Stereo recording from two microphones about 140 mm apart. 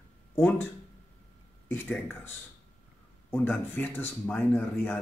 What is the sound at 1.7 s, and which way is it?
Speech, 15° left (ahead or behind).